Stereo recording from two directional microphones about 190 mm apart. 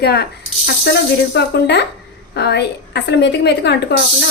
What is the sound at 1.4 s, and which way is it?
Speech, 60° left (ahead or behind).